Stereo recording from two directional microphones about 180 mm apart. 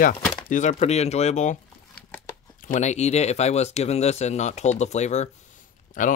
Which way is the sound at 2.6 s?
45° left (ahead or behind).